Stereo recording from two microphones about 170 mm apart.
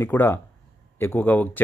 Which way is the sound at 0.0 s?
15° left (ahead or behind).